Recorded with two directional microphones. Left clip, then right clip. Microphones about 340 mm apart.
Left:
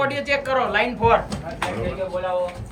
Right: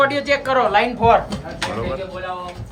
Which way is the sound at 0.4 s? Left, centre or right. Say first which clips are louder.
Right 5 dB; right.